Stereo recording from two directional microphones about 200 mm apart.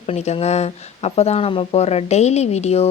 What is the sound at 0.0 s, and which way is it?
Speech, 30° left (ahead or behind).